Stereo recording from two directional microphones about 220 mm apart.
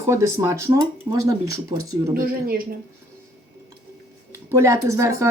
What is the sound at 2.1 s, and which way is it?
Speech, 40° right (ahead or behind).